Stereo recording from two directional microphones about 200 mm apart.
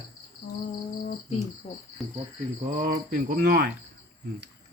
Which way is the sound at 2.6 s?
40° right (ahead or behind).